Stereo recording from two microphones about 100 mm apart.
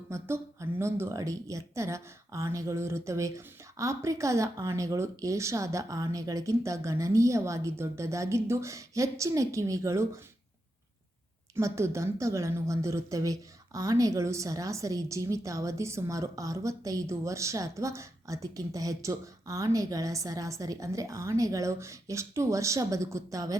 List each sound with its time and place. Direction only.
0.1 s a woman's voice: 30° right (ahead or behind)
11.5 s a woman's voice: 30° right (ahead or behind)